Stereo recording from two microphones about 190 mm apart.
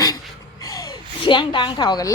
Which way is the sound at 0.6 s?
20° left (ahead or behind).